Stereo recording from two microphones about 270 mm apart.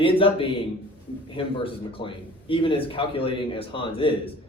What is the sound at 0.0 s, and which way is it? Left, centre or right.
A man's voice, centre.